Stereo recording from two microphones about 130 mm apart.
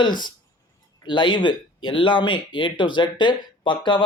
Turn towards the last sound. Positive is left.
turn(degrees=35)  # may be behind; listen again after turning